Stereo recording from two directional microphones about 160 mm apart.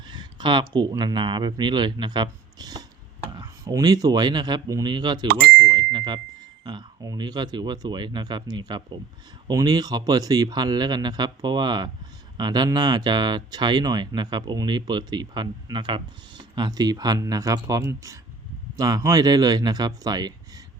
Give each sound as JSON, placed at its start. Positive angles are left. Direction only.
{"t": 0.1, "sound": "speech", "side_deg": -30}